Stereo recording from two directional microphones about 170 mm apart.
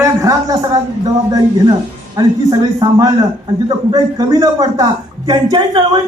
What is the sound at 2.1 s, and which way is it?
A man's voice, 25° right (ahead or behind).